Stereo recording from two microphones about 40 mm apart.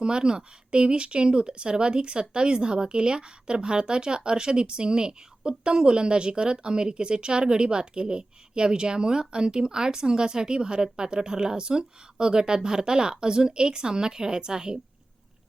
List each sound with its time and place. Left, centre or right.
0.0 s a woman's voice: right